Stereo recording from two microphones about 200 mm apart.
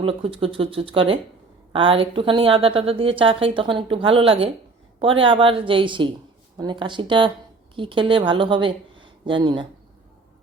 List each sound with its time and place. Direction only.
0.0 s a woman's voice: 25° right (ahead or behind)